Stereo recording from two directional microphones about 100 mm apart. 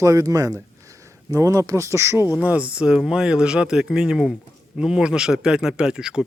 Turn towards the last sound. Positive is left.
turn(degrees=-10)  # may be behind; listen again after turning